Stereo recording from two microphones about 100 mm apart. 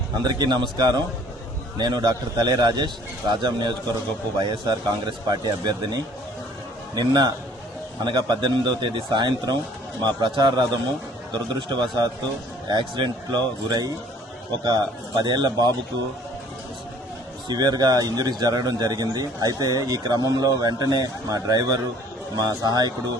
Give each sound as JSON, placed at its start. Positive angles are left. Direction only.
{"t": 0.2, "sound": "speech", "side_deg": -45}
{"t": 17.5, "sound": "a man's voice", "side_deg": -45}